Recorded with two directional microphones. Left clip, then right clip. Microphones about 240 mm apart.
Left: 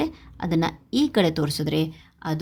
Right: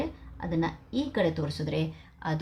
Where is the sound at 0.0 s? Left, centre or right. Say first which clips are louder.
Left 7 dB; left.